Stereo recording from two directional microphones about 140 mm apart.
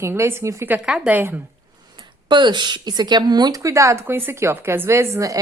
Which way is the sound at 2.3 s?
35° right (ahead or behind).